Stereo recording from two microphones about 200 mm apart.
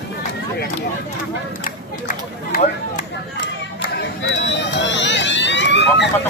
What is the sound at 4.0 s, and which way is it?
Vehicle, 60° left (ahead or behind).